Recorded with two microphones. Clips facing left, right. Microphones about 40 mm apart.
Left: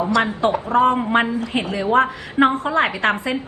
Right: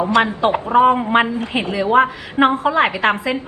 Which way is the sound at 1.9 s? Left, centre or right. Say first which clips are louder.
Right 2 dB; centre.